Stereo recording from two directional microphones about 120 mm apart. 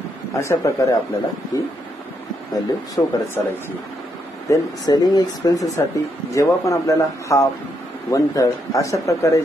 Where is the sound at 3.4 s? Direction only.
20° left (ahead or behind).